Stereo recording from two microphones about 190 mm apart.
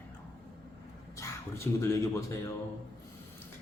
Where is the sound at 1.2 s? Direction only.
15° left (ahead or behind).